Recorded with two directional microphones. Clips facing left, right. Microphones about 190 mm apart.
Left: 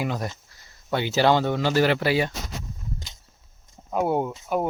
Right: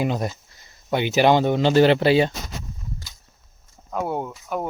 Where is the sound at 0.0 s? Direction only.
20° right (ahead or behind).